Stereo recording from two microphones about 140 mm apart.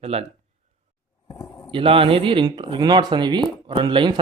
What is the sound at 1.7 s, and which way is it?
Speech, 40° right (ahead or behind).